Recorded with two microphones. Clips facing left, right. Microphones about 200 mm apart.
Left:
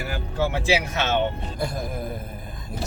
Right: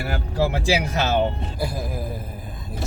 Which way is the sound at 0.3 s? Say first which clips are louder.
Right 1 dB; 35° right (ahead or behind).